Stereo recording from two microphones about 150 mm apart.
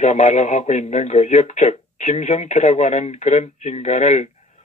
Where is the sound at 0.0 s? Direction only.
50° left (ahead or behind).